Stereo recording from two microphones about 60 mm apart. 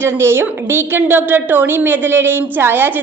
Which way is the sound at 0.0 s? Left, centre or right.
Right.